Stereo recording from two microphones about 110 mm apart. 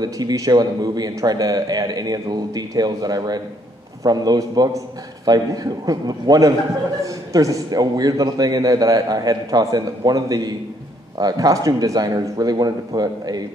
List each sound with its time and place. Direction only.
0.0 s a man's voice: 35° right (ahead or behind)